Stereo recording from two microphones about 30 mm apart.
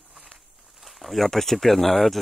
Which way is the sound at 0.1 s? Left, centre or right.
Centre.